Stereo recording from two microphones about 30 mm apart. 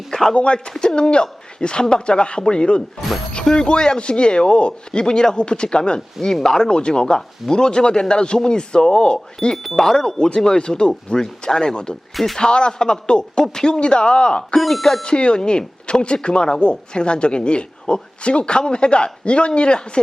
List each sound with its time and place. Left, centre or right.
0.1 s a sound: centre
0.3 s speech: left
6.4 s speech: centre
9.7 s speech: centre
10.2 s speech: left
12.1 s speech: centre
12.4 s speech: left
14.6 s speech: centre
15.0 s speech: left